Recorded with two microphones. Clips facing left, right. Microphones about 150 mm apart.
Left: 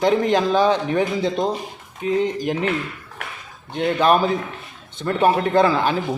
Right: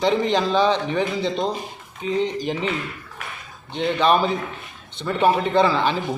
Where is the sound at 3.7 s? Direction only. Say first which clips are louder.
Left 2 dB; 5° left (ahead or behind).